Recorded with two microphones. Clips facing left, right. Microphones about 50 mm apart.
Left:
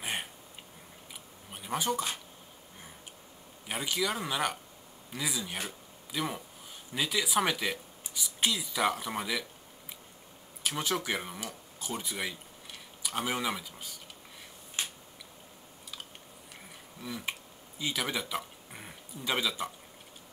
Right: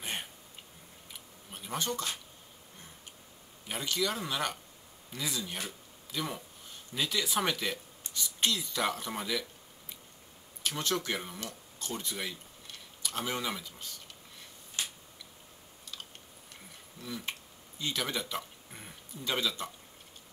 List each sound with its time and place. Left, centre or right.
0.0 s a sound: centre
1.5 s speech: centre
3.6 s speech: centre
10.7 s speech: centre
14.8 s a sound: left
17.0 s speech: centre